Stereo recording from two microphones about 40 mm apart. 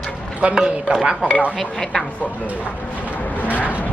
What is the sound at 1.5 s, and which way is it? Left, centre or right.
Speech, centre.